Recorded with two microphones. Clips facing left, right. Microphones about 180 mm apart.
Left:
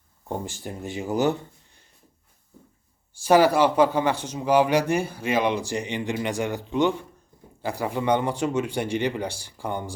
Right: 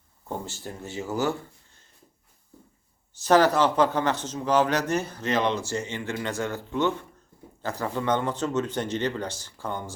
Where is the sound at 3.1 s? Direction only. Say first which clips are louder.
Left 2 dB; 10° left (ahead or behind).